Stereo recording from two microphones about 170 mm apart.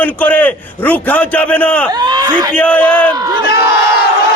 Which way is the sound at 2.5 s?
10° left (ahead or behind).